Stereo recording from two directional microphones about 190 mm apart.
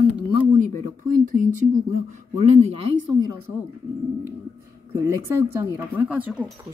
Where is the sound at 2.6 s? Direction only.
30° right (ahead or behind).